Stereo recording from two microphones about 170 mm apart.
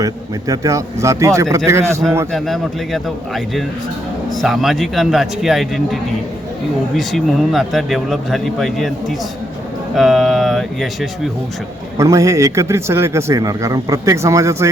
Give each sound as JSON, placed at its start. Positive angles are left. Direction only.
{"t": 0.0, "sound": "a man's voice", "side_deg": -20}
{"t": 2.3, "sound": "speech", "side_deg": 0}
{"t": 11.9, "sound": "a man's voice", "side_deg": -15}